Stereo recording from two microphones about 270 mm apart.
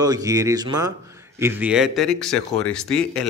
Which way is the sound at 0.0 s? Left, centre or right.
Centre.